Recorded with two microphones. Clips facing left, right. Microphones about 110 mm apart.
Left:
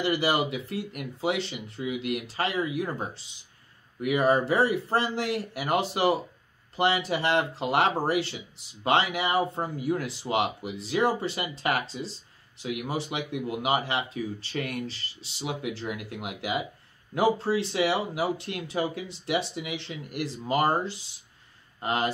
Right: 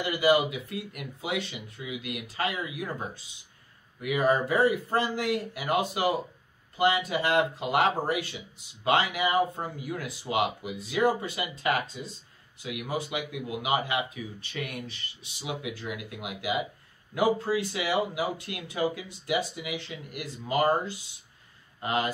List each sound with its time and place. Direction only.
0.0 s speech: 30° left (ahead or behind)